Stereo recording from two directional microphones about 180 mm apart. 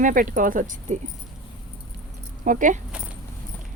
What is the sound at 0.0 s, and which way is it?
Speech, 50° right (ahead or behind).